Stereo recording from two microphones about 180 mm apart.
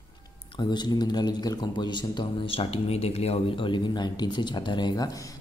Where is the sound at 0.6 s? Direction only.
25° left (ahead or behind).